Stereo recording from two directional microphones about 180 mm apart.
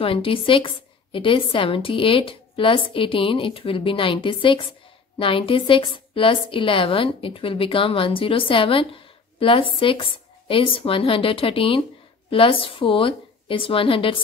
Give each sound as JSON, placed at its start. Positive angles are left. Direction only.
{"t": 0.0, "sound": "a woman's voice", "side_deg": 30}